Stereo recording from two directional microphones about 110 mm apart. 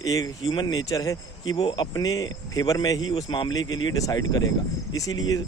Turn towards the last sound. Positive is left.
turn(degrees=35)  # may be behind; listen again after turning